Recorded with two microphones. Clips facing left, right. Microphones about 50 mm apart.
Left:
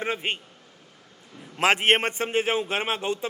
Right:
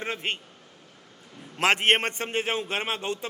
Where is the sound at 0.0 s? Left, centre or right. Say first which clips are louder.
Left 3 dB; centre.